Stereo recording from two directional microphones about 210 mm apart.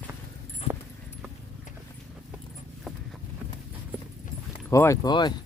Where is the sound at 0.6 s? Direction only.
30° left (ahead or behind).